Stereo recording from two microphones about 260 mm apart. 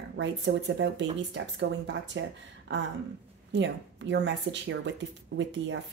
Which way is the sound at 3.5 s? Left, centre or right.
Right.